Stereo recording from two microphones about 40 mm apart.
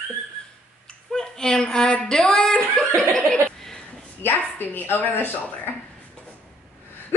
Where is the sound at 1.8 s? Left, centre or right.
Left.